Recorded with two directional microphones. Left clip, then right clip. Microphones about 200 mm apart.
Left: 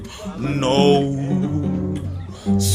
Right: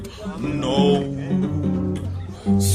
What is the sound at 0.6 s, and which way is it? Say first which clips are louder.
Music: left 4 dB; 55° left (ahead or behind).